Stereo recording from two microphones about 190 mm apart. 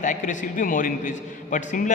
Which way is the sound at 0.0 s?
40° left (ahead or behind).